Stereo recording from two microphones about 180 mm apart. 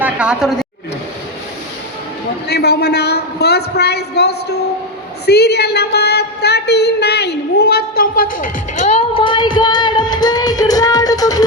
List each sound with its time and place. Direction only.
0.0 s a woman's voice: 5° right (ahead or behind)
2.5 s a woman's voice: 65° left (ahead or behind)
5.2 s a sound: 65° left (ahead or behind); by 11.4 s 20° left (ahead or behind)